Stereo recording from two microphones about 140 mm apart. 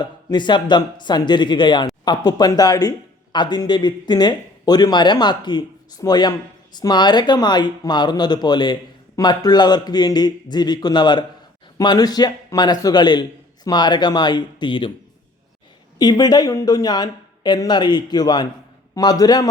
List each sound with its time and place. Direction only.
0.0 s speech: 30° left (ahead or behind)
16.0 s speech: 30° left (ahead or behind)